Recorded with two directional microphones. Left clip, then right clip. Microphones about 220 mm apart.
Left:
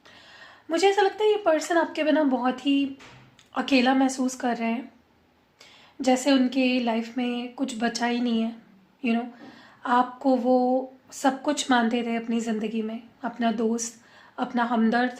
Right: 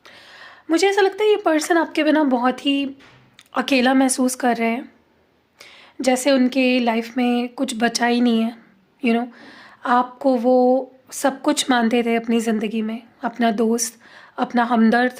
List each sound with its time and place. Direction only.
0.1 s a woman's voice: 50° right (ahead or behind)